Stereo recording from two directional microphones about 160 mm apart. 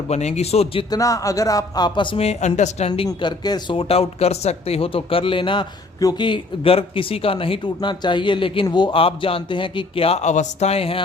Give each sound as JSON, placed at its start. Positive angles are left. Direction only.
{"t": 0.1, "sound": "speech", "side_deg": 45}
{"t": 0.9, "sound": "speech", "side_deg": 20}
{"t": 3.1, "sound": "speech", "side_deg": 25}